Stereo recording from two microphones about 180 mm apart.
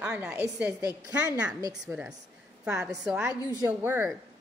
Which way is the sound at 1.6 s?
20° right (ahead or behind).